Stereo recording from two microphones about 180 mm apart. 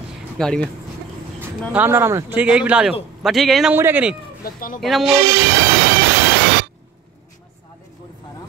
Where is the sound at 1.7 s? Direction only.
10° right (ahead or behind).